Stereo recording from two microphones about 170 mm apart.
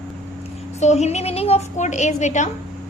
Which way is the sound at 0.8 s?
40° left (ahead or behind).